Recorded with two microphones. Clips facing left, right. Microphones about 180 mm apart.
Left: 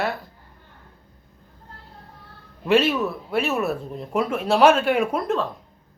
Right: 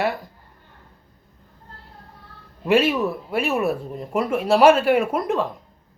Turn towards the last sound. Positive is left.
turn(degrees=-15)  # may be behind; listen again after turning